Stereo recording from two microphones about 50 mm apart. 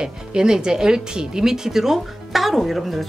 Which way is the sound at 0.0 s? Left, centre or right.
Centre.